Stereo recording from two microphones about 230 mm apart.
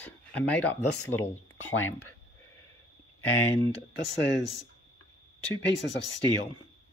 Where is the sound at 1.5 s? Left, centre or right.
Left.